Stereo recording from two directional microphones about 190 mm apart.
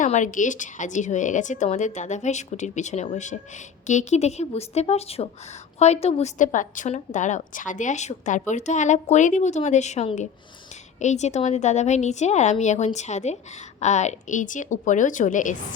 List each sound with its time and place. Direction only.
0.0 s a woman's voice: 40° left (ahead or behind)